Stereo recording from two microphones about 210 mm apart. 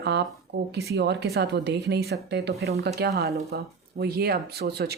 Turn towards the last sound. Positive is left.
turn(degrees=-50)  # may be behind; listen again after turning